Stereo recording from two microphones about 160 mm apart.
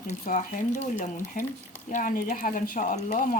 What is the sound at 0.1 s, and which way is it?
Speech, 50° left (ahead or behind).